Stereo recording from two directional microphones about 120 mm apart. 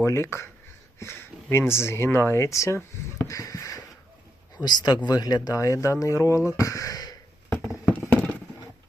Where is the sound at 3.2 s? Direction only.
25° left (ahead or behind).